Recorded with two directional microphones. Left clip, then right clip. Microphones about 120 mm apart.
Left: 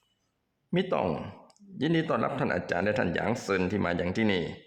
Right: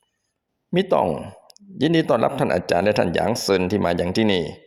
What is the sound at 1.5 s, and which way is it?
Speech, 50° right (ahead or behind).